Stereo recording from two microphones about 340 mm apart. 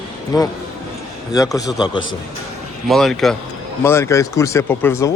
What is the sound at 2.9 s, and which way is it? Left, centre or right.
A man's voice, centre.